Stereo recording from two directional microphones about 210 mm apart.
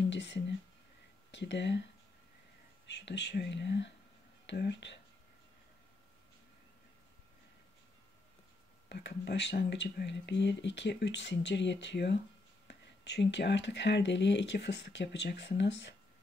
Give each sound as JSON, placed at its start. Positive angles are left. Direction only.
{"t": 0.1, "sound": "speech", "side_deg": 55}
{"t": 2.9, "sound": "speech", "side_deg": 55}
{"t": 8.8, "sound": "speech", "side_deg": 55}